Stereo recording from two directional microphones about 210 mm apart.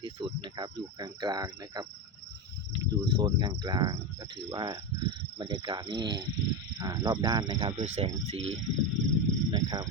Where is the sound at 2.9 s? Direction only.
20° right (ahead or behind).